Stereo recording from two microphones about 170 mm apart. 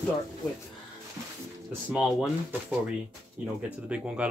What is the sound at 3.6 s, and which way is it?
Speech, 5° right (ahead or behind).